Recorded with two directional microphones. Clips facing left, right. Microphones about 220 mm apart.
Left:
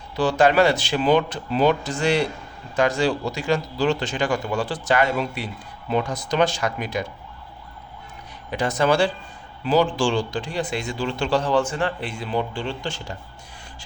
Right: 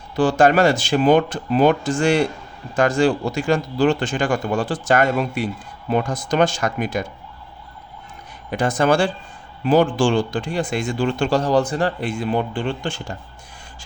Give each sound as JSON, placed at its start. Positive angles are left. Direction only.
{"t": 0.2, "sound": "speech", "side_deg": -50}
{"t": 8.4, "sound": "speech", "side_deg": -50}